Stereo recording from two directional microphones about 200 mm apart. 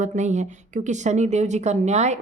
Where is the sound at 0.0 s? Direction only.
35° right (ahead or behind).